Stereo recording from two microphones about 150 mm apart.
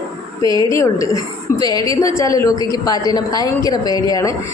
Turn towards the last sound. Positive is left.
turn(degrees=25)  # may be behind; listen again after turning